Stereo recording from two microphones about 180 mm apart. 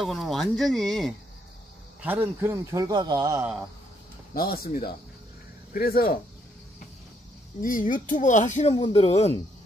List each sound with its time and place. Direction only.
0.0 s speech: centre (ahead or behind)
2.0 s speech: 10° right (ahead or behind)
4.3 s speech: 55° left (ahead or behind)
7.6 s speech: 50° left (ahead or behind)
8.7 s speech: 30° left (ahead or behind)